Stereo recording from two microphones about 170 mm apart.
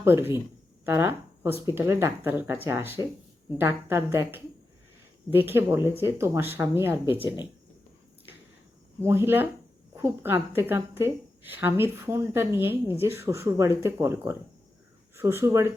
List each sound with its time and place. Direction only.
0.0 s a woman's voice: 15° right (ahead or behind)
7.2 s speech: 25° left (ahead or behind)
9.0 s a woman's voice: 15° right (ahead or behind)